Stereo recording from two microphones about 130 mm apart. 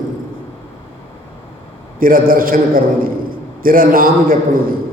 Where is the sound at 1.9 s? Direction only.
90° right.